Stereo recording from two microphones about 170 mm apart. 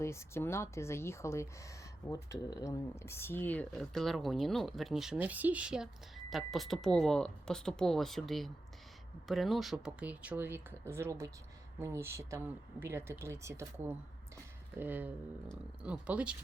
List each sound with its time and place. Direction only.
0.0 s speech: 15° left (ahead or behind); by 16.3 s 5° right (ahead or behind)